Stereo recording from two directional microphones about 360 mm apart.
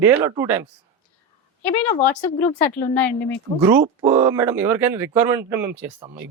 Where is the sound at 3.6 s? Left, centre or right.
Centre.